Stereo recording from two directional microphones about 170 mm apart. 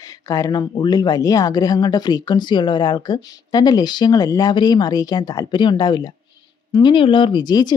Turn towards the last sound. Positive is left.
turn(degrees=25)  # may be behind; listen again after turning